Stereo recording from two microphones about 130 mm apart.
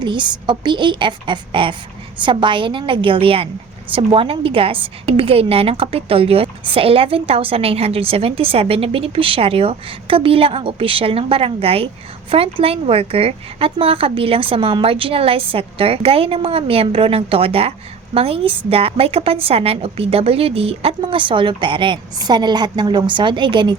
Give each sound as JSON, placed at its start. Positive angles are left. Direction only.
{"t": 0.0, "sound": "a woman's voice", "side_deg": -35}